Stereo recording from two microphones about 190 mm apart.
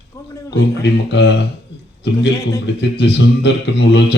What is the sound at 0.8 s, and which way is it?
Speech, 65° left (ahead or behind).